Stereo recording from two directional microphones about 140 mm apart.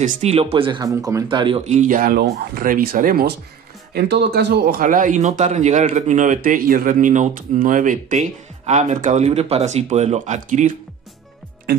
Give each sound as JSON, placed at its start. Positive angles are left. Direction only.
{"t": 0.0, "sound": "speech", "side_deg": -50}
{"t": 1.7, "sound": "speech", "side_deg": -65}
{"t": 4.6, "sound": "speech", "side_deg": -85}